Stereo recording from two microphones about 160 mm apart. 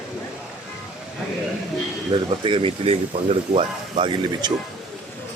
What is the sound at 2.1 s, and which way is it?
Speech, 30° right (ahead or behind).